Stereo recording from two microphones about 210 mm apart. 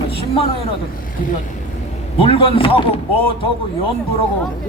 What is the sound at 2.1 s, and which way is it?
Speech, 25° left (ahead or behind).